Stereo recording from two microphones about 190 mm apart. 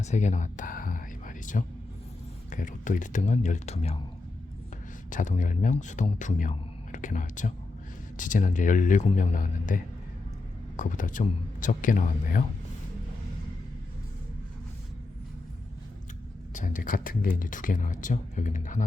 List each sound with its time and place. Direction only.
0.0 s whispering: 40° left (ahead or behind)
2.5 s a man's voice: 40° left (ahead or behind)
5.1 s a man's voice: 40° left (ahead or behind)
16.6 s speech: 45° left (ahead or behind)